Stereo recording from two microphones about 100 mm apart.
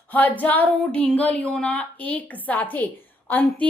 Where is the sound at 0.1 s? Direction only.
15° left (ahead or behind).